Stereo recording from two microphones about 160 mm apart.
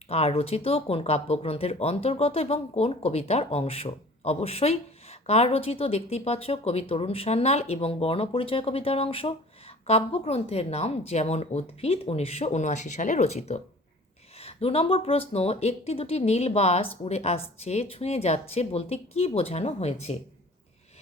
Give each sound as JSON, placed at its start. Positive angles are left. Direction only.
{"t": 0.1, "sound": "speech", "side_deg": 40}